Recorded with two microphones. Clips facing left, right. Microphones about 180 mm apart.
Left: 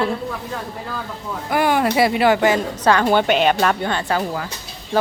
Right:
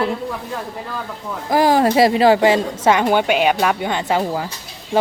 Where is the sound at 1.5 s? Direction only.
35° right (ahead or behind).